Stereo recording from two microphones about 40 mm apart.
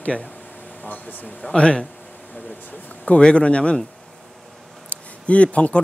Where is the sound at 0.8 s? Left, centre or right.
Left.